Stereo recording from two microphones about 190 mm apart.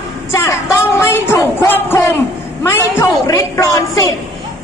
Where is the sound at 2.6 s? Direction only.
15° left (ahead or behind).